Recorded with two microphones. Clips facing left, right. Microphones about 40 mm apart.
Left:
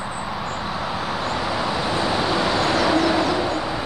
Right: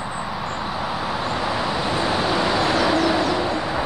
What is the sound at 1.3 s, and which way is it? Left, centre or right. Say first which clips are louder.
Vehicle: even; centre.